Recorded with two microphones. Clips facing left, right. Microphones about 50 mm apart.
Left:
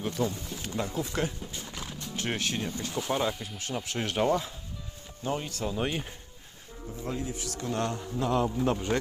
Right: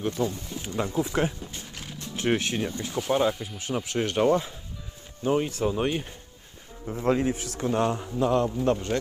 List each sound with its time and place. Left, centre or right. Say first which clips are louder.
0.0 s speech: right 3 dB; centre
2.1 s speech: right 6 dB; centre
5.2 s speech: right 7 dB; centre
5.8 s speech: right 4 dB; centre
6.8 s speech: right 10 dB; right
7.3 s a man's voice: right 5 dB; right
7.7 s speech: right 6 dB; centre
8.2 s speech: right 3 dB; centre